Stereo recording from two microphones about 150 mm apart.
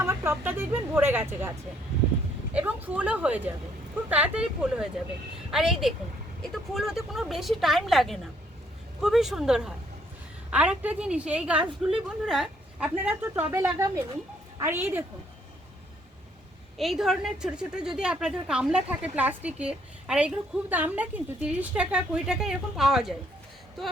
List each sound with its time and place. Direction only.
0.0 s a woman's voice: 20° right (ahead or behind)
16.7 s a woman's voice: centre (ahead or behind)